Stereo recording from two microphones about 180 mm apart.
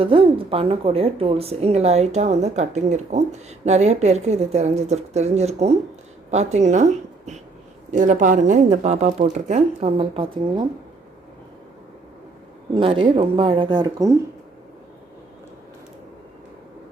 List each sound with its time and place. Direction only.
0.0 s speech: 30° right (ahead or behind)
12.7 s speech: 30° right (ahead or behind)